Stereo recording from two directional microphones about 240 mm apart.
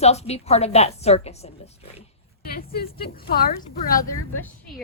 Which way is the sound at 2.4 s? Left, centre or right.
Left.